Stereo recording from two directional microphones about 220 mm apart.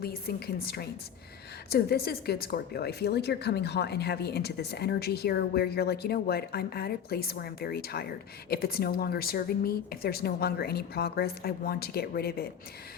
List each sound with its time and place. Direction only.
0.0 s speech: 45° left (ahead or behind)